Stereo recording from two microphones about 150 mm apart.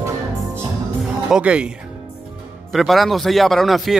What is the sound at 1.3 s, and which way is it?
Speech, 5° right (ahead or behind).